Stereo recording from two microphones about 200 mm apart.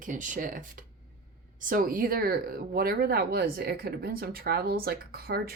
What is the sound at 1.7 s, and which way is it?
Speech, 45° right (ahead or behind).